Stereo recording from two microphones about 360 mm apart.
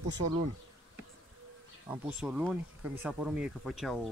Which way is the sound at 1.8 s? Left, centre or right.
Centre.